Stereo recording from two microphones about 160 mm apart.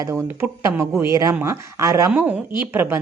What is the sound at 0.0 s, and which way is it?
A woman's voice, 15° right (ahead or behind).